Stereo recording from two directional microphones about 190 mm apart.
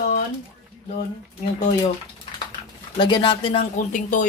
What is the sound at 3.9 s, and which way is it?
Speech, 40° left (ahead or behind).